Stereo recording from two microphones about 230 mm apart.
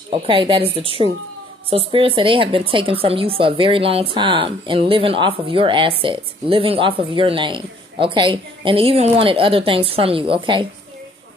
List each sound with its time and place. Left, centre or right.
0.1 s speech: right